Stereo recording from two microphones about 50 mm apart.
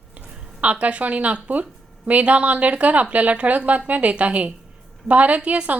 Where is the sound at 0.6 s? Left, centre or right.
Right.